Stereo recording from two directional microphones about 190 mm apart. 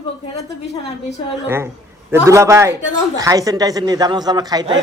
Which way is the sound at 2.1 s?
15° right (ahead or behind).